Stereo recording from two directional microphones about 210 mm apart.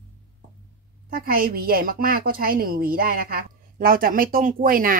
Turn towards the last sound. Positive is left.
turn(degrees=-40)  # may be behind; listen again after turning